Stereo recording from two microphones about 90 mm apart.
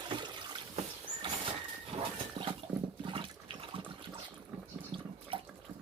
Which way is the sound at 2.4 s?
65° right (ahead or behind).